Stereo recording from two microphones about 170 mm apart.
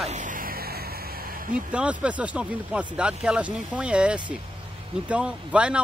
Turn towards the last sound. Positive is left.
turn(degrees=-5)  # may be behind; listen again after turning